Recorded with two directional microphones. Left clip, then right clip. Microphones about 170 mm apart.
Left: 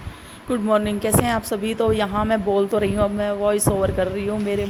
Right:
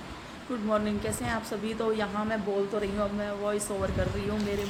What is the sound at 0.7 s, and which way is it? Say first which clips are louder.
A woman's voice: left 10 dB; 50° left (ahead or behind).